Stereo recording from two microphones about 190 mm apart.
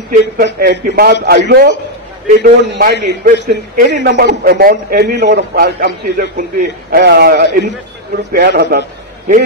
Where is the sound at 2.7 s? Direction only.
60° right (ahead or behind).